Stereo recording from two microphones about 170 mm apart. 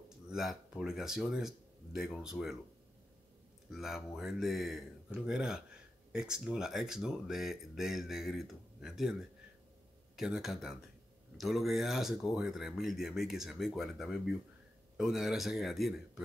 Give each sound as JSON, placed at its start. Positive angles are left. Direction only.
{"t": 0.3, "sound": "speech", "side_deg": -5}
{"t": 3.7, "sound": "speech", "side_deg": 0}
{"t": 10.1, "sound": "speech", "side_deg": -5}